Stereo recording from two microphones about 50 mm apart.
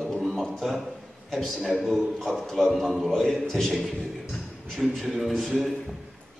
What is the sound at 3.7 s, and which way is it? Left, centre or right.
A man's voice, centre.